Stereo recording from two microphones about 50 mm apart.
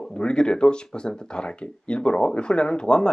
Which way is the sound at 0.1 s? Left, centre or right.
Centre.